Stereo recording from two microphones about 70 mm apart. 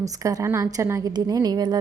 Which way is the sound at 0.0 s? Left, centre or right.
Right.